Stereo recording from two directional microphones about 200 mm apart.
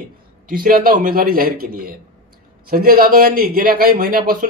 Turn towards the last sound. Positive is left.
turn(degrees=-45)  # may be behind; listen again after turning